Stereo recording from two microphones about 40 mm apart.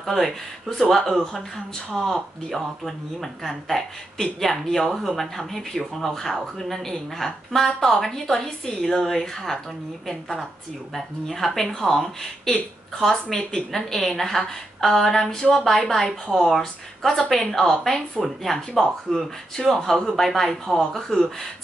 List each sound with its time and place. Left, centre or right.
0.0 s speech: centre
11.0 s speech: centre
18.2 s speech: centre